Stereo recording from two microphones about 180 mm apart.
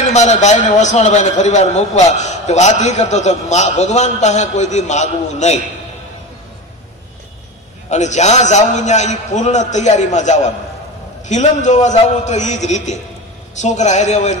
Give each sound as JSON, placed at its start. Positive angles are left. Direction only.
{"t": 0.1, "sound": "a man's voice", "side_deg": 40}
{"t": 7.9, "sound": "a man's voice", "side_deg": 40}